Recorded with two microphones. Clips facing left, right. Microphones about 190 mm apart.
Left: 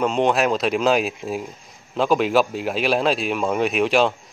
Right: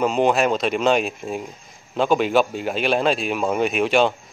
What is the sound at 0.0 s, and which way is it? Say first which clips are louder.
A man's voice: right 1 dB; centre (ahead or behind).